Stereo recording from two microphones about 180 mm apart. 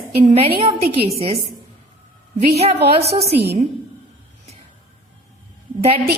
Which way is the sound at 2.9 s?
35° right (ahead or behind).